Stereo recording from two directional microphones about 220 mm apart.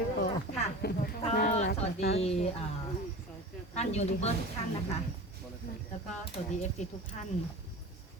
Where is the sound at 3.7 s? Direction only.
30° left (ahead or behind).